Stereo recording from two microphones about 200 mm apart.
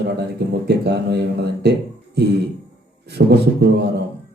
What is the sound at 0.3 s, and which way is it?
Speech, 55° right (ahead or behind).